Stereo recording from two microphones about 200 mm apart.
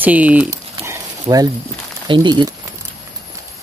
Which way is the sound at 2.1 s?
20° right (ahead or behind).